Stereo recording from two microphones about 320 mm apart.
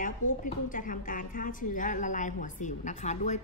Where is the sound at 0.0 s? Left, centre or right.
Left.